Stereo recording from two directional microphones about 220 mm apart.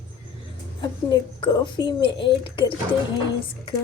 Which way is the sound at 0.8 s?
20° left (ahead or behind).